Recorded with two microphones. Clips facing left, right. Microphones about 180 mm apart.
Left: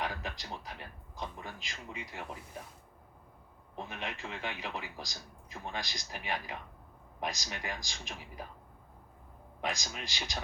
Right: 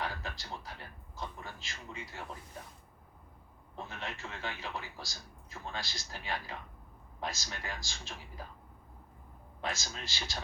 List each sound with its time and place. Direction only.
0.0 s a man's voice: 15° left (ahead or behind)
3.8 s a man's voice: 15° left (ahead or behind)
9.6 s a man's voice: 15° left (ahead or behind)